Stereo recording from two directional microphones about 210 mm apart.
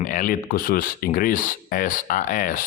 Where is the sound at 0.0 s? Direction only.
40° left (ahead or behind).